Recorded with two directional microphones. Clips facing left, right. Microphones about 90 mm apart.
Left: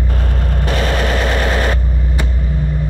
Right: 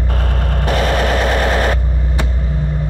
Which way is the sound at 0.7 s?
50° right (ahead or behind).